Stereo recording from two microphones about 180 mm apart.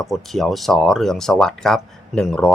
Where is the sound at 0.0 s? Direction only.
Centre (ahead or behind).